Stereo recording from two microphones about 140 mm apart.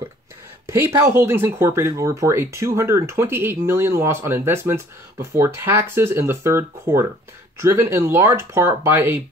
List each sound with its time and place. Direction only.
0.7 s speech: 15° right (ahead or behind)